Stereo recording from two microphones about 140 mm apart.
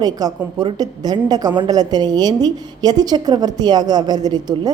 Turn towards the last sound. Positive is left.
turn(degrees=-30)  # may be behind; listen again after turning